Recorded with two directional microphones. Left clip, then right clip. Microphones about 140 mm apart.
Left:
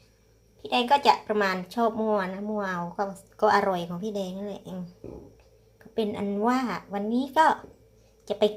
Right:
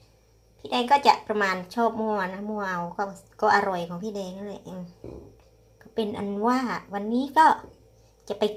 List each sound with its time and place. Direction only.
0.6 s a woman's voice: centre (ahead or behind)
5.8 s a woman's voice: 5° left (ahead or behind)